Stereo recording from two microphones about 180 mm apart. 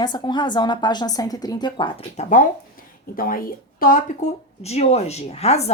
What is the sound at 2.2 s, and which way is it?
Speech, 45° left (ahead or behind).